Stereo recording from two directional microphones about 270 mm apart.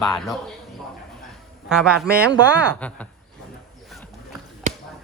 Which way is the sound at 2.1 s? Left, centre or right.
Right.